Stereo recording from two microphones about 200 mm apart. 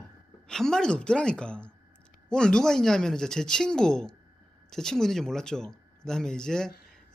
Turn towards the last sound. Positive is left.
turn(degrees=5)  # may be behind; listen again after turning